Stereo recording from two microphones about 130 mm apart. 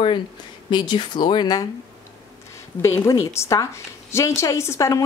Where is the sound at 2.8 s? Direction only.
20° left (ahead or behind).